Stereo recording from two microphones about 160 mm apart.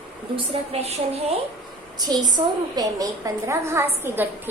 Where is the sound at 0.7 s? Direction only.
40° right (ahead or behind).